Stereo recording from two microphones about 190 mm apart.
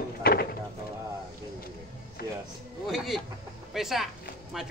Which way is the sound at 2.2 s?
55° left (ahead or behind).